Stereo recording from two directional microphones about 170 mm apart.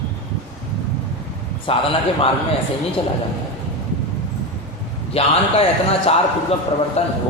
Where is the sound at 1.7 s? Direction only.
35° left (ahead or behind).